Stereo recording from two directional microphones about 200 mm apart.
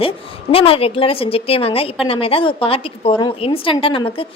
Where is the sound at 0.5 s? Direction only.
30° left (ahead or behind).